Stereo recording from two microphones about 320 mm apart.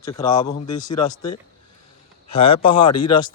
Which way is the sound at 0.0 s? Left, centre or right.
Centre.